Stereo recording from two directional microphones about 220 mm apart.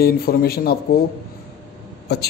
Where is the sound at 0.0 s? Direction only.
45° left (ahead or behind).